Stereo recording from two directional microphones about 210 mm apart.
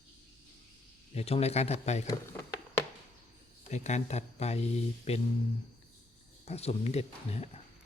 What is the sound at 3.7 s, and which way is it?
Speech, 35° left (ahead or behind).